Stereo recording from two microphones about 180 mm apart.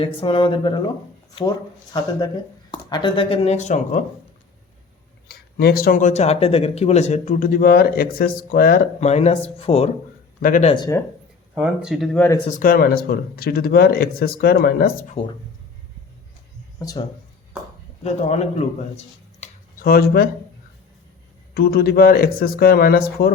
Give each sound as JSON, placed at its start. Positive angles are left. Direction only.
{"t": 0.0, "sound": "speech", "side_deg": 30}
{"t": 5.3, "sound": "speech", "side_deg": 60}
{"t": 9.0, "sound": "speech", "side_deg": 35}
{"t": 10.4, "sound": "speech", "side_deg": 50}
{"t": 11.5, "sound": "speech", "side_deg": -5}
{"t": 12.5, "sound": "speech", "side_deg": 50}
{"t": 15.2, "sound": "speech", "side_deg": 30}
{"t": 16.8, "sound": "speech", "side_deg": 20}
{"t": 18.0, "sound": "speech", "side_deg": 40}
{"t": 19.8, "sound": "speech", "side_deg": 55}
{"t": 21.5, "sound": "speech", "side_deg": 60}